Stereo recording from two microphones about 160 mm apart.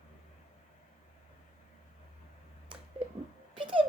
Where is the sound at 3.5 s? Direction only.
30° right (ahead or behind).